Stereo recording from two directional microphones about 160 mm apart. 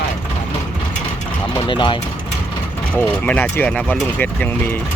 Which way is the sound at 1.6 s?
30° left (ahead or behind).